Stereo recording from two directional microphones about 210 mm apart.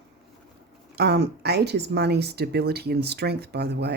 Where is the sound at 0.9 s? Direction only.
50° right (ahead or behind).